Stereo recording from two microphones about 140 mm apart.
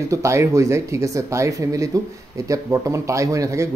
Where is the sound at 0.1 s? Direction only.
20° right (ahead or behind).